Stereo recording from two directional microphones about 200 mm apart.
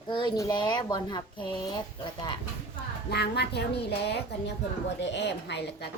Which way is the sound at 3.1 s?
55° left (ahead or behind).